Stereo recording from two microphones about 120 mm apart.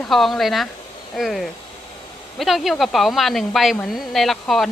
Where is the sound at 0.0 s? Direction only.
Centre (ahead or behind).